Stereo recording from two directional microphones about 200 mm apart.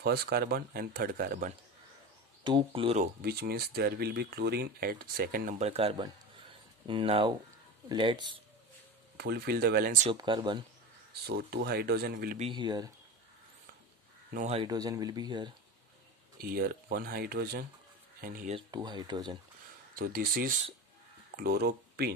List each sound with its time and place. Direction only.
0.0 s speech: 50° right (ahead or behind)
2.4 s speech: 25° right (ahead or behind)
3.0 s speech: 50° right (ahead or behind)
5.6 s speech: 30° right (ahead or behind)
9.1 s speech: 55° right (ahead or behind)
10.1 s speech: 25° right (ahead or behind)
11.2 s speech: 50° right (ahead or behind)
12.4 s speech: 25° right (ahead or behind)
14.3 s speech: 30° right (ahead or behind)
16.3 s speech: 50° right (ahead or behind)
18.5 s speech: 20° right (ahead or behind)
20.0 s speech: 45° right (ahead or behind)